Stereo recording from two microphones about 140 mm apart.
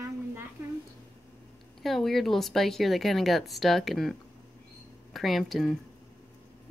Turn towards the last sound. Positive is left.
turn(degrees=0)  # may be behind; listen again after turning